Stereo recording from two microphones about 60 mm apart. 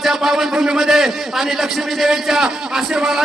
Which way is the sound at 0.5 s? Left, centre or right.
Centre.